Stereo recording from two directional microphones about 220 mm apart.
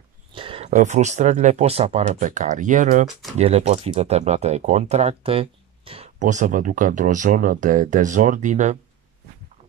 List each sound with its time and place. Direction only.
0.3 s speech: 25° right (ahead or behind)